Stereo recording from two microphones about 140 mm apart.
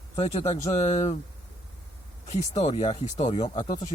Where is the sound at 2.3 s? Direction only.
55° left (ahead or behind).